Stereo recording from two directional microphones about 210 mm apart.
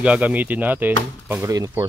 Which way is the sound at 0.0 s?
5° right (ahead or behind).